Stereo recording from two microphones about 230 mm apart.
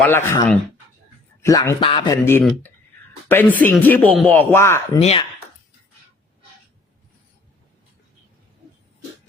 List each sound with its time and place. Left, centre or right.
0.0 s speech: centre
4.9 s speech: left